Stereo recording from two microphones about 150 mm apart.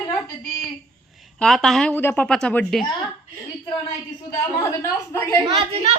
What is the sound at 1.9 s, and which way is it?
Speech, 15° left (ahead or behind).